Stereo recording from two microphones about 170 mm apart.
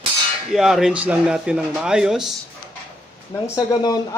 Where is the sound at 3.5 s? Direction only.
20° left (ahead or behind).